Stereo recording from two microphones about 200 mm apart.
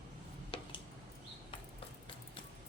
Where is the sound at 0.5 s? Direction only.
30° left (ahead or behind).